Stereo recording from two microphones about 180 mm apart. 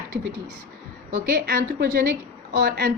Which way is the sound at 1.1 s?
60° right (ahead or behind).